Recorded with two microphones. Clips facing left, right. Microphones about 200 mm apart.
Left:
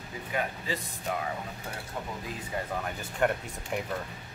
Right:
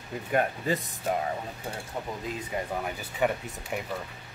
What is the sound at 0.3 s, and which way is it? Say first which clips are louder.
Speech: right 6 dB; 50° right (ahead or behind).